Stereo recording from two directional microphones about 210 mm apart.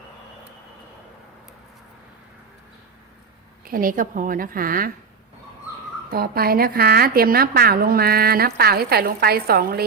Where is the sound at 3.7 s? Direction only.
40° right (ahead or behind).